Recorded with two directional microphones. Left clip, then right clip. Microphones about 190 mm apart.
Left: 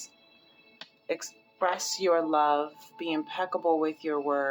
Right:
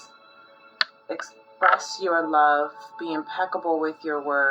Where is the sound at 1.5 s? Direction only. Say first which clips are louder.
Right 8 dB; 20° left (ahead or behind).